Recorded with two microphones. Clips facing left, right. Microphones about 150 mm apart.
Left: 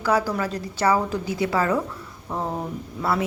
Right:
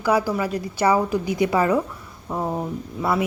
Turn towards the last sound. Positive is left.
turn(degrees=-10)  # may be behind; listen again after turning